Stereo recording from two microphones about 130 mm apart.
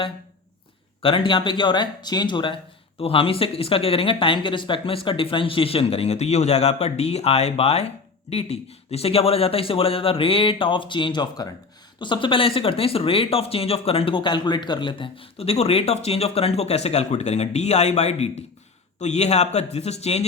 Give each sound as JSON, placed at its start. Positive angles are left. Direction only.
{"t": 1.0, "sound": "speech", "side_deg": 40}